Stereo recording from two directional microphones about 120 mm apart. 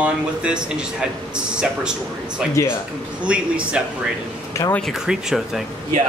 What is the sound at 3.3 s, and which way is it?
Speech, 10° right (ahead or behind).